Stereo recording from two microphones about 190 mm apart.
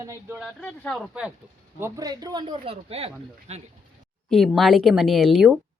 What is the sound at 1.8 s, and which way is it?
Speech, 15° right (ahead or behind).